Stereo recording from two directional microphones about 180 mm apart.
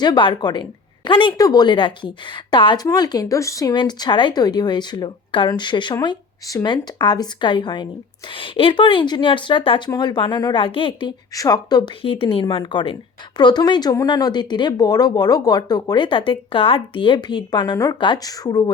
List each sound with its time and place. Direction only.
0.0 s speech: 25° left (ahead or behind)